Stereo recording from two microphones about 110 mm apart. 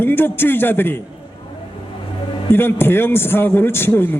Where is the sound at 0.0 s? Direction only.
20° left (ahead or behind).